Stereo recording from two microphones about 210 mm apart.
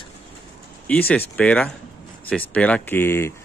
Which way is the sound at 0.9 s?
10° left (ahead or behind).